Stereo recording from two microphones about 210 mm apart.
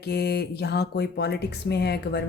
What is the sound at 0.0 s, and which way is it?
Speech, 50° left (ahead or behind).